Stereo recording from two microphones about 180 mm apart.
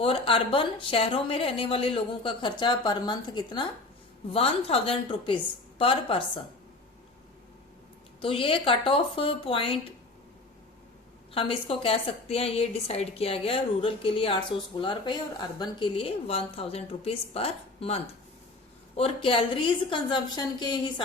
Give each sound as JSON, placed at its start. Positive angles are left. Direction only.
{"t": 0.0, "sound": "a woman's voice", "side_deg": 30}
{"t": 8.2, "sound": "a woman's voice", "side_deg": 30}
{"t": 11.3, "sound": "a woman's voice", "side_deg": 30}